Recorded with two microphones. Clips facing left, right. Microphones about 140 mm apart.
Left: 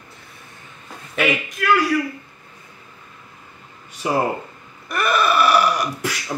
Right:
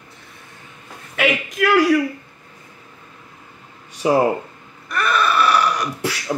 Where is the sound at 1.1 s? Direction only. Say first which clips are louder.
Right 1 dB; 90° right.